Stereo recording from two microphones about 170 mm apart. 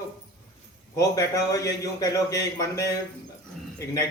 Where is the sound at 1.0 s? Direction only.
20° left (ahead or behind).